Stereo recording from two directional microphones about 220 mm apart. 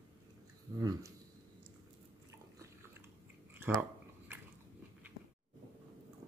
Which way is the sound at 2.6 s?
10° right (ahead or behind).